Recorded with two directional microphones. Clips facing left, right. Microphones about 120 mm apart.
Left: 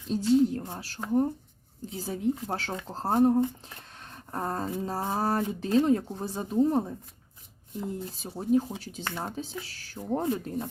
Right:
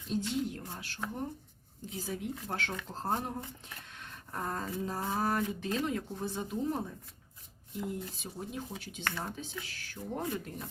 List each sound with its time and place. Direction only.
0.1 s speech: 35° left (ahead or behind)
9.0 s speech: 20° left (ahead or behind)
9.3 s speech: 35° left (ahead or behind)